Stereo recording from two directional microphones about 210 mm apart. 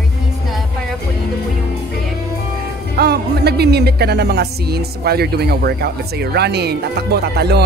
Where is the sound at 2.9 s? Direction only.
50° right (ahead or behind).